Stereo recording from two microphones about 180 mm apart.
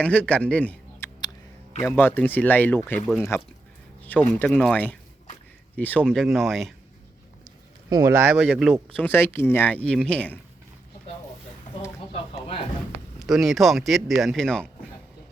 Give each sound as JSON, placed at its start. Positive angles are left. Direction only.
{"t": 0.0, "sound": "speech", "side_deg": 5}
{"t": 7.9, "sound": "speech", "side_deg": -20}
{"t": 8.4, "sound": "speech", "side_deg": 0}
{"t": 9.0, "sound": "speech", "side_deg": 10}
{"t": 12.1, "sound": "a sound", "side_deg": 35}
{"t": 13.1, "sound": "speech", "side_deg": 0}